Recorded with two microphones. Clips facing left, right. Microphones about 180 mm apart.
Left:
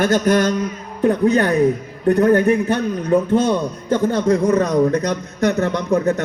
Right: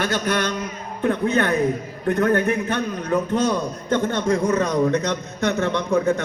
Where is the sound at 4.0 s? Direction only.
35° left (ahead or behind).